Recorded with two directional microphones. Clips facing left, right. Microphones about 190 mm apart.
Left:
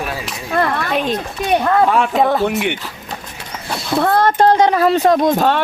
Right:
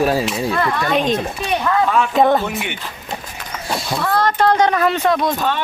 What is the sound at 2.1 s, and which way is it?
Speech, centre (ahead or behind).